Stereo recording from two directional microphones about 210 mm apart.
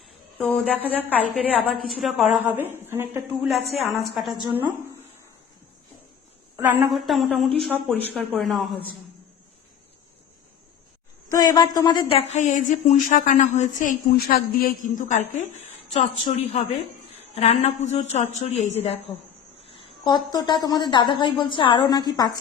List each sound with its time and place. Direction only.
0.3 s a woman's voice: 5° left (ahead or behind)
6.6 s a woman's voice: 10° right (ahead or behind)
11.3 s a woman's voice: 20° left (ahead or behind)